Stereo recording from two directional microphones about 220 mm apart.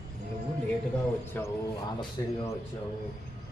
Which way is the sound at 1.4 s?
10° left (ahead or behind).